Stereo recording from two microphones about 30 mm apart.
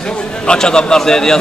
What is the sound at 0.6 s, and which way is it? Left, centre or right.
Speech, left.